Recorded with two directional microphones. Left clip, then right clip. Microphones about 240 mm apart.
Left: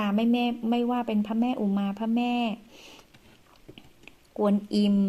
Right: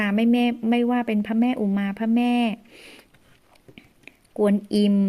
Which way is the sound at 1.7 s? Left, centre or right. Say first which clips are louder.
Right 3 dB; right.